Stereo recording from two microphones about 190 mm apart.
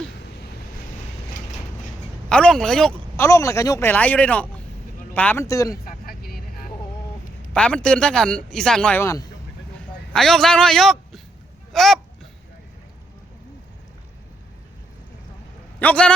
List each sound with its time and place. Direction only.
2.3 s a man's voice: 5° left (ahead or behind)
3.2 s speech: 15° left (ahead or behind)
5.8 s vehicle: 50° left (ahead or behind)
7.5 s a man's voice: 5° left (ahead or behind)
10.1 s a man's voice: centre (ahead or behind)
15.8 s speech: 5° left (ahead or behind)